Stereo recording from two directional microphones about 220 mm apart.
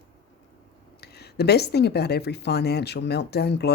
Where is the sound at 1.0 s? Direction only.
45° left (ahead or behind).